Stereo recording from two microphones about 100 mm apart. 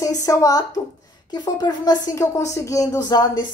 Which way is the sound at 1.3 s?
45° left (ahead or behind).